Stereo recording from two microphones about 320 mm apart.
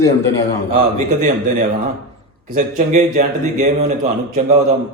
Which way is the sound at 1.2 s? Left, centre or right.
Right.